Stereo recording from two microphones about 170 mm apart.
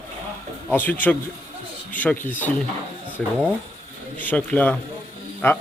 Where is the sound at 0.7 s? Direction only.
10° left (ahead or behind).